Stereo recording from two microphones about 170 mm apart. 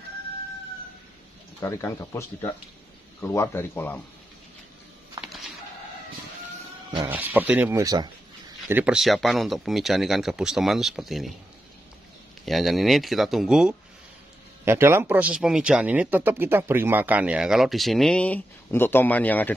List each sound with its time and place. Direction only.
1.6 s speech: 15° left (ahead or behind)
5.2 s a sound: centre (ahead or behind)
7.1 s speech: 10° right (ahead or behind)
8.6 s speech: 10° right (ahead or behind)
12.4 s speech: centre (ahead or behind)
14.6 s speech: 15° right (ahead or behind); by 19.5 s 10° left (ahead or behind)